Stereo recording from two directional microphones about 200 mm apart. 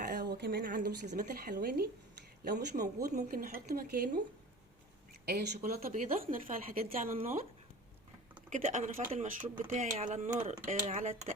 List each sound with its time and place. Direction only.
0.0 s speech: 55° right (ahead or behind)
5.2 s speech: 50° right (ahead or behind)
8.4 s speech: 40° right (ahead or behind)